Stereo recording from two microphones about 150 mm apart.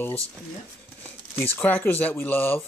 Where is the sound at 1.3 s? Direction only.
10° left (ahead or behind).